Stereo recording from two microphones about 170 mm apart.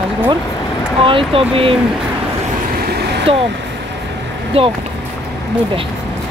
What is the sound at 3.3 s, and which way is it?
Speech, 30° right (ahead or behind).